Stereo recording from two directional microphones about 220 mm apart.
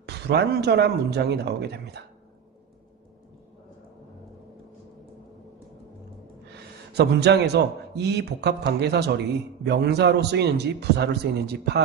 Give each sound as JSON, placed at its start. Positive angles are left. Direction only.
{"t": 0.0, "sound": "a man's voice", "side_deg": -50}
{"t": 6.9, "sound": "a man's voice", "side_deg": -50}